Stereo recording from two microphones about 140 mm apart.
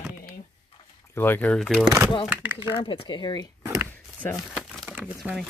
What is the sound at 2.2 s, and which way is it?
Speech, 10° right (ahead or behind).